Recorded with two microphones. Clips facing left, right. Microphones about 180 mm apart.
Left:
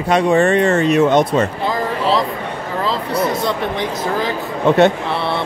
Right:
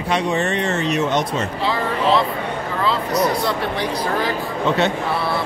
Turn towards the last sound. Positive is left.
turn(degrees=50)  # may be behind; listen again after turning